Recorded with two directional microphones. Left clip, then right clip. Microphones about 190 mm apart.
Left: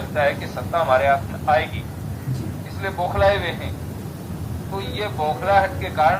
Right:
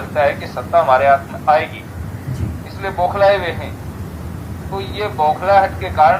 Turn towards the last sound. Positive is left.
turn(degrees=-50)  # may be behind; listen again after turning